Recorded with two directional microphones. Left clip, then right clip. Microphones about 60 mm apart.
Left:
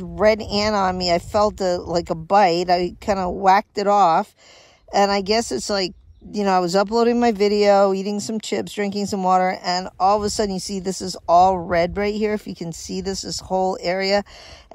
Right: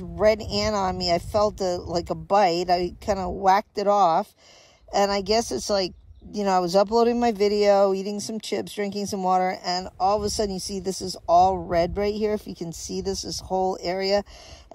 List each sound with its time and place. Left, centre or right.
0.3 s speech: right